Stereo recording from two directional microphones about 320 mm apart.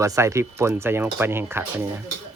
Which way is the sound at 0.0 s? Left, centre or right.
Centre.